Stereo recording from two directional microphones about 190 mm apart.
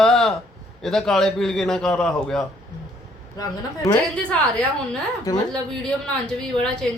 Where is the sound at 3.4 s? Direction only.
15° left (ahead or behind).